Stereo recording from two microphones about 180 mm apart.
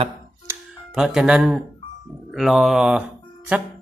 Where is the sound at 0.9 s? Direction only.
Centre (ahead or behind).